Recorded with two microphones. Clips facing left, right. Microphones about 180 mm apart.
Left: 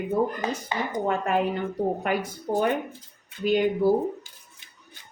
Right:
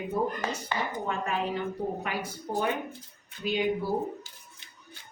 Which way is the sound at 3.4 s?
50° left (ahead or behind).